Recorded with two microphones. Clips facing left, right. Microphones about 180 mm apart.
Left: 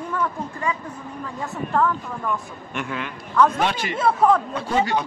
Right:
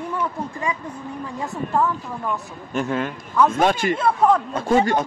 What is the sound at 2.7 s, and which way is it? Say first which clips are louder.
A man's voice: right 6 dB; 40° right (ahead or behind).